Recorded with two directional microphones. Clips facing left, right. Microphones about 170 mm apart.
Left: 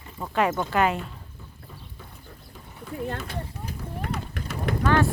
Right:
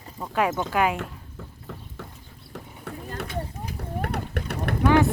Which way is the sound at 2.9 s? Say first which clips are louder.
Left 2 dB; 70° right (ahead or behind).